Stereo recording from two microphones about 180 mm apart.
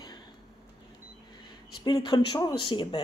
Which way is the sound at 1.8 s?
25° left (ahead or behind).